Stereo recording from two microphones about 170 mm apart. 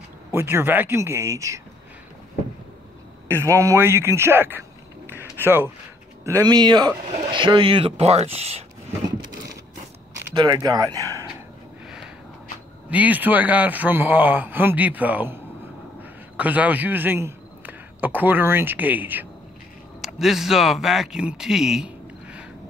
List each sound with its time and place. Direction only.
0.3 s speech: 15° right (ahead or behind)
3.3 s speech: 15° right (ahead or behind); by 8.6 s 35° right (ahead or behind)
10.3 s speech: 25° right (ahead or behind)
12.9 s a man's voice: 10° right (ahead or behind)